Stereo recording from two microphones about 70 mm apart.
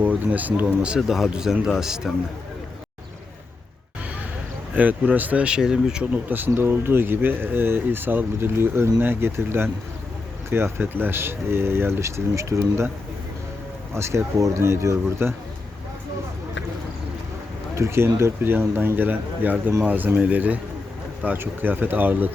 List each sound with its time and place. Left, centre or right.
0.0 s speech: right; by 2.0 s centre
4.7 s a man's voice: right
6.2 s speech: right
13.9 s speech: right
17.7 s a man's voice: right